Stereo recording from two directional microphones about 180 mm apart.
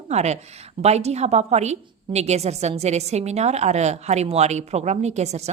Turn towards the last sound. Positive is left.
turn(degrees=-40)  # may be behind; listen again after turning